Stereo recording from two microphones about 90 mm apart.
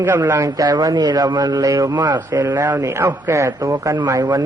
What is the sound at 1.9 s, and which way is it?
Speech, 55° right (ahead or behind).